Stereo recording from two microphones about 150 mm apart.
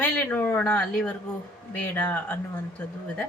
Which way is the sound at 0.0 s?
10° left (ahead or behind).